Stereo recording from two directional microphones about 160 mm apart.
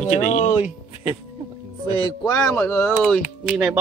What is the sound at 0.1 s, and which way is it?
Speech, 50° left (ahead or behind).